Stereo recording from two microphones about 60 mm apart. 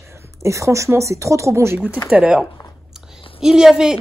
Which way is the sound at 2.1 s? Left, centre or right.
Right.